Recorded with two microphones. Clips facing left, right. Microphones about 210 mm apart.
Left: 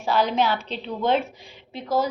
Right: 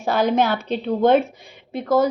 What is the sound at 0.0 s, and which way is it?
A woman's voice, 50° right (ahead or behind).